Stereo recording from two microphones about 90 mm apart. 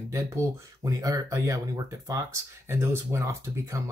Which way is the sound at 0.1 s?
35° right (ahead or behind).